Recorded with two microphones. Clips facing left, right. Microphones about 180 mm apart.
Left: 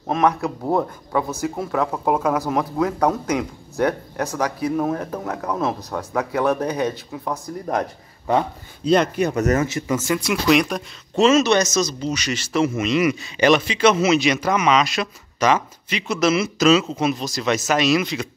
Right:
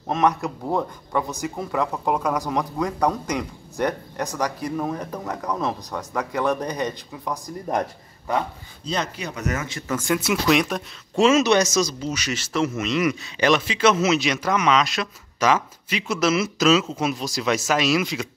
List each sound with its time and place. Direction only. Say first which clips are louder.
0.1 s speech: left 2 dB; centre (ahead or behind)
8.8 s speech: left 10 dB; 55° left (ahead or behind)
9.7 s speech: left 5 dB; 20° left (ahead or behind)
9.9 s speech: right 1 dB; centre (ahead or behind)